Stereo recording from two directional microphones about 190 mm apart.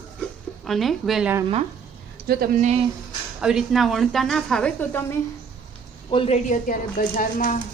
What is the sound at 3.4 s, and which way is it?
A woman's voice, 5° right (ahead or behind).